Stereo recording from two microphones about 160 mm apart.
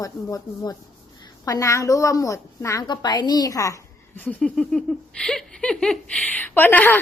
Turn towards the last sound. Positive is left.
turn(degrees=10)  # may be behind; listen again after turning